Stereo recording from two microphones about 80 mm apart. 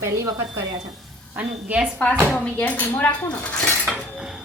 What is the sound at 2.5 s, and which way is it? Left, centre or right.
Speech, left.